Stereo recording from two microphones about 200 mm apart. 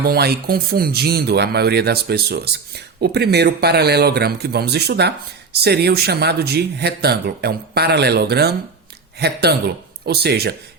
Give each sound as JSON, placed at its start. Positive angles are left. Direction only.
{"t": 0.0, "sound": "speech", "side_deg": -50}